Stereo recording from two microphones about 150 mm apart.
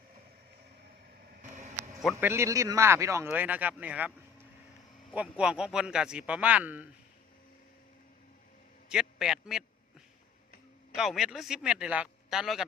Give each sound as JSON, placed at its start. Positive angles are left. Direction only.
{"t": 1.4, "sound": "a sound", "side_deg": -55}
{"t": 2.2, "sound": "speech", "side_deg": -15}
{"t": 8.9, "sound": "a man's voice", "side_deg": -5}
{"t": 10.9, "sound": "speech", "side_deg": 0}